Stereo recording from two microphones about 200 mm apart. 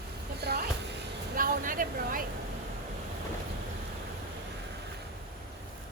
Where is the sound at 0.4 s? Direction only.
55° right (ahead or behind).